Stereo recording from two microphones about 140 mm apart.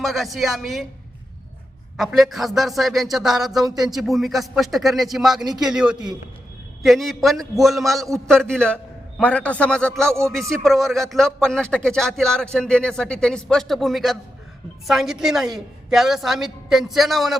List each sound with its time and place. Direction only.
0.0 s speech: centre (ahead or behind)
2.0 s a man's voice: centre (ahead or behind)